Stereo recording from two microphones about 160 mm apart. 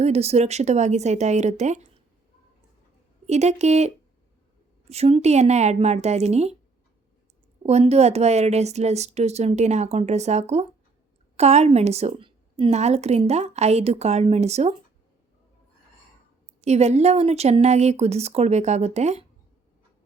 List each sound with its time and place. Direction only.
0.0 s a woman's voice: 40° right (ahead or behind)
3.2 s a woman's voice: 45° right (ahead or behind)
7.6 s a woman's voice: 40° right (ahead or behind)
16.6 s a woman's voice: 45° right (ahead or behind)